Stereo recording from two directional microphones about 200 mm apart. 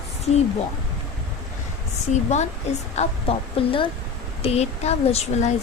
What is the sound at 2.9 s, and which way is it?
Speech, 30° left (ahead or behind).